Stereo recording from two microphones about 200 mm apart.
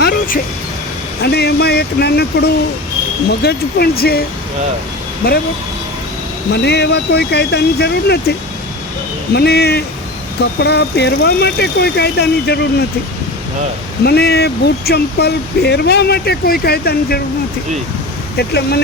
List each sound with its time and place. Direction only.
0.0 s a sound: 45° left (ahead or behind)
1.2 s speech: 55° left (ahead or behind)
6.5 s speech: 55° left (ahead or behind)
9.3 s speech: 55° left (ahead or behind)
14.0 s speech: 55° left (ahead or behind)
18.3 s speech: 55° left (ahead or behind)